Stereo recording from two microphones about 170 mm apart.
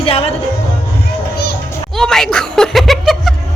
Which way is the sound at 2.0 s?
Centre (ahead or behind).